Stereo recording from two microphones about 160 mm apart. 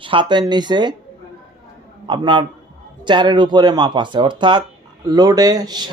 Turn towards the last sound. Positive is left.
turn(degrees=-25)  # may be behind; listen again after turning